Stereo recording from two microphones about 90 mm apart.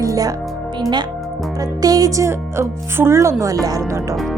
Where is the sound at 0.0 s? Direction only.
40° right (ahead or behind).